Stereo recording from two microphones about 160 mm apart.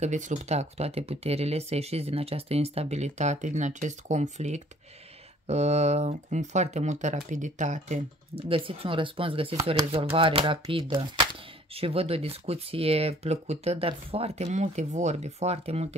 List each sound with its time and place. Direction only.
0.0 s speech: 50° right (ahead or behind)